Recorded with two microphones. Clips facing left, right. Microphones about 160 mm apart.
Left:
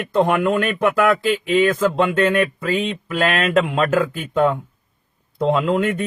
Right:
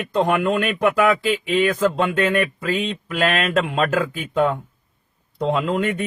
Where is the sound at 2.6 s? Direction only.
50° left (ahead or behind).